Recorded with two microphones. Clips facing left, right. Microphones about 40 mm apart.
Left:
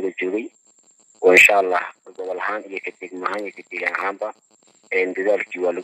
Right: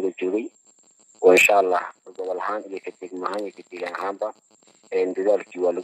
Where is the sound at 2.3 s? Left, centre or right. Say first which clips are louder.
Left 2 dB; left.